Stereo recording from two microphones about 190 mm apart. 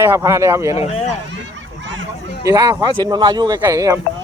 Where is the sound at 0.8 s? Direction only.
35° left (ahead or behind).